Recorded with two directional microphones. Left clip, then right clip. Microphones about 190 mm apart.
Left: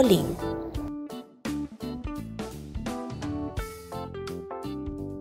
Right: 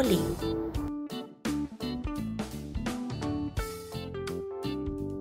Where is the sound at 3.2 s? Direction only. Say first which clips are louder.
Right 3 dB; centre (ahead or behind).